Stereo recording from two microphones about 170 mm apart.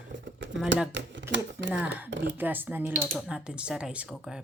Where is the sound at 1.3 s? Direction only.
15° right (ahead or behind).